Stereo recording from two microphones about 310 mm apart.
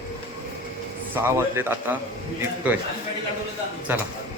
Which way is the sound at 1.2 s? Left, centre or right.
Centre.